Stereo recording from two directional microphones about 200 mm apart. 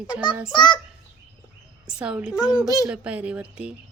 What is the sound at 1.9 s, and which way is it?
A child's voice, 5° right (ahead or behind).